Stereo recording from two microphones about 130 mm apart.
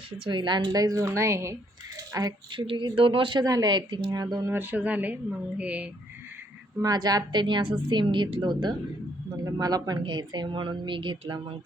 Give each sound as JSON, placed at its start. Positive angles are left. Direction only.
{"t": 0.3, "sound": "a woman's voice", "side_deg": -35}
{"t": 2.1, "sound": "a woman's voice", "side_deg": -35}
{"t": 4.5, "sound": "speech", "side_deg": -15}
{"t": 6.8, "sound": "a woman's voice", "side_deg": -30}